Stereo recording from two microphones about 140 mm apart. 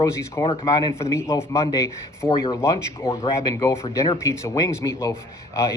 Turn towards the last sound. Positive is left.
turn(degrees=20)  # may be behind; listen again after turning